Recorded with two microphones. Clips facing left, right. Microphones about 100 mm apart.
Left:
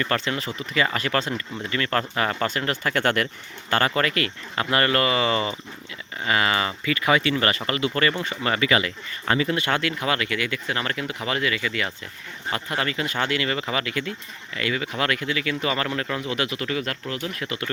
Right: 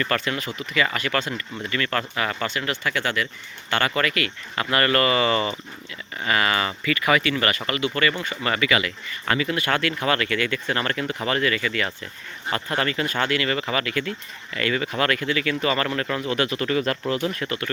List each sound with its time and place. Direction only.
0.0 s speech: 25° left (ahead or behind); by 3.2 s 55° left (ahead or behind)
3.7 s speech: 30° left (ahead or behind); by 17.6 s 5° right (ahead or behind)